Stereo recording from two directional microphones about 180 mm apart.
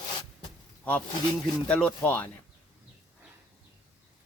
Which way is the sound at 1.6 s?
10° left (ahead or behind).